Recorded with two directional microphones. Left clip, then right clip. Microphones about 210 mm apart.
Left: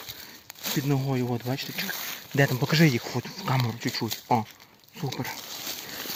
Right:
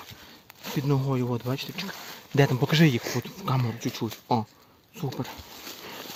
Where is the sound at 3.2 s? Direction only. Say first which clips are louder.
Left 1 dB; 5° right (ahead or behind).